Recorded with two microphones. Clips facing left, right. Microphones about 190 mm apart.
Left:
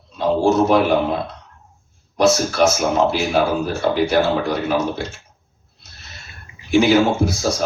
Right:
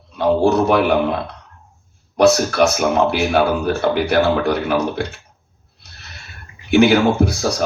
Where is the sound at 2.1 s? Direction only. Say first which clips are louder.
Right 3 dB; 65° right (ahead or behind).